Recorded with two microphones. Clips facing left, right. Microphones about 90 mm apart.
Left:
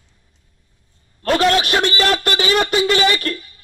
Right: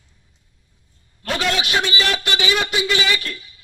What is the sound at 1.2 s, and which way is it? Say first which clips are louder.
A man's voice: left 7 dB; 45° left (ahead or behind).